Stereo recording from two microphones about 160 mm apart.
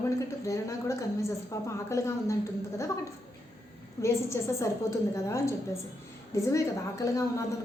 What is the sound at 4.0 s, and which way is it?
A woman's voice, 20° left (ahead or behind).